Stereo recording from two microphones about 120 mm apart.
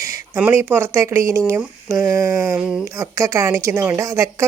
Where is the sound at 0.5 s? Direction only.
20° right (ahead or behind).